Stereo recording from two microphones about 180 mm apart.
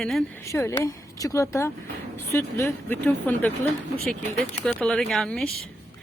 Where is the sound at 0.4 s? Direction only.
15° left (ahead or behind).